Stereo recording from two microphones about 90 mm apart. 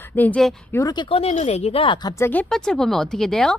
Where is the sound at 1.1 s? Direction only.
90° left.